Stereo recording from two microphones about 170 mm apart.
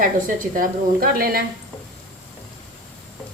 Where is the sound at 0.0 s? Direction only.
55° right (ahead or behind).